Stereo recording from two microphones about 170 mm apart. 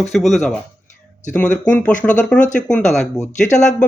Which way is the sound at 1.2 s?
45° left (ahead or behind).